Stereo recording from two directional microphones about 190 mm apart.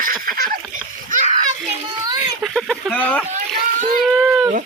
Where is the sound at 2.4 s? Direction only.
Centre (ahead or behind).